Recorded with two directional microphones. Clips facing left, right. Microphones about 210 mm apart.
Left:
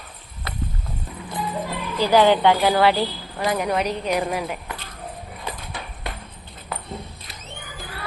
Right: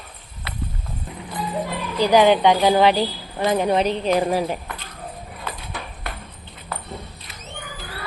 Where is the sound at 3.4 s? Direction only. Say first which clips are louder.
Right 4 dB; 25° right (ahead or behind).